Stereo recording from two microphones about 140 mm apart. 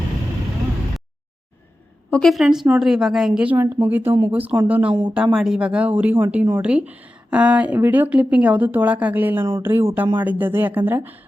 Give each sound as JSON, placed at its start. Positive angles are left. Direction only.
{"t": 2.0, "sound": "a woman's voice", "side_deg": 5}
{"t": 4.9, "sound": "speech", "side_deg": -35}
{"t": 5.1, "sound": "speech", "side_deg": -5}